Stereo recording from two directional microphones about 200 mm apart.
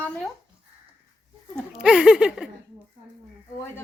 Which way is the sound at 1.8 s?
5° right (ahead or behind).